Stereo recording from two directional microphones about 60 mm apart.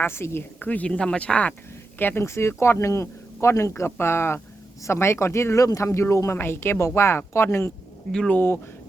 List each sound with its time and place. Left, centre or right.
0.0 s speech: left
0.6 s speech: left
0.9 s speech: centre
2.0 s speech: left
2.2 s speech: left
3.7 s speech: left
6.3 s speech: left
8.3 s speech: left